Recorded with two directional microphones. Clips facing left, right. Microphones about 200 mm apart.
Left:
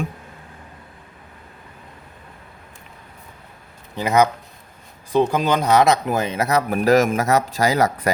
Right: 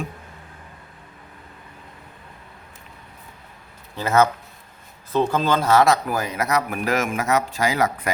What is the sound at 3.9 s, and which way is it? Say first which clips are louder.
Speech: left 1 dB; 15° left (ahead or behind).